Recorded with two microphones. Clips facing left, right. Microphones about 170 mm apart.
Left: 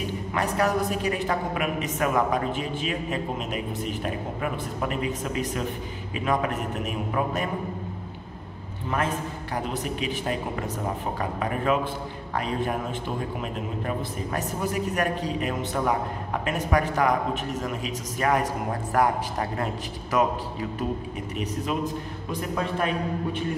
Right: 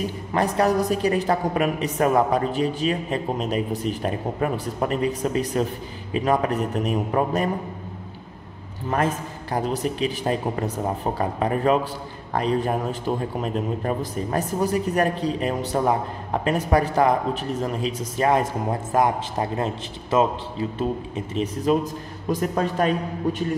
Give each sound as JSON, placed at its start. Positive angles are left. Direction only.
{"t": 0.3, "sound": "a woman's voice", "side_deg": -35}
{"t": 8.9, "sound": "a woman's voice", "side_deg": -40}
{"t": 21.7, "sound": "a woman's voice", "side_deg": -35}